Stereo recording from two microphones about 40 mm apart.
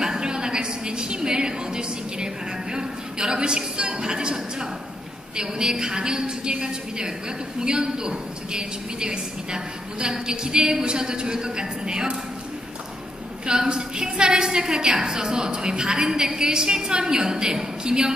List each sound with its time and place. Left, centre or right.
0.0 s a sound: centre
5.3 s a woman's voice: right
13.5 s a woman's voice: centre